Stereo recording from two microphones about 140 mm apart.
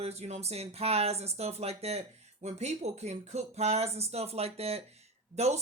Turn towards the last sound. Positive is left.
turn(degrees=-50)  # may be behind; listen again after turning